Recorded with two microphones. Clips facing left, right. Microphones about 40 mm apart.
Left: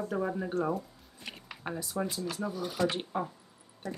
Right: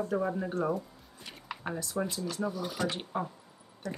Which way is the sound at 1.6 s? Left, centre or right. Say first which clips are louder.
Even; centre.